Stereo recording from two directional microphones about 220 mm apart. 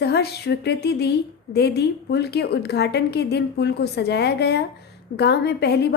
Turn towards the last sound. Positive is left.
turn(degrees=50)  # may be behind; listen again after turning